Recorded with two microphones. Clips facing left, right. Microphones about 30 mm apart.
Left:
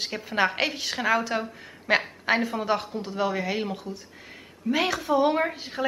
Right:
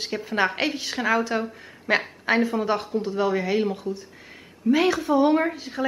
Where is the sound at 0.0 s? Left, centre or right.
Centre.